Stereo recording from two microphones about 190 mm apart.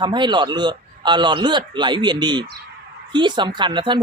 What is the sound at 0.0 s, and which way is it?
A man's voice, 25° right (ahead or behind).